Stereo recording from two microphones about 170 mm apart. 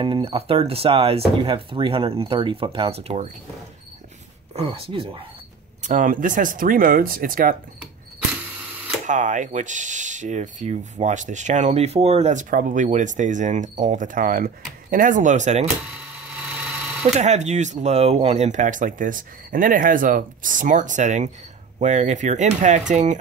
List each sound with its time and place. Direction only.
0.0 s speech: 30° right (ahead or behind)
4.6 s speech: 35° right (ahead or behind)
5.8 s speech: 50° right (ahead or behind)
9.0 s speech: 50° right (ahead or behind)
16.4 s engine: 5° right (ahead or behind)
17.0 s speech: 40° right (ahead or behind)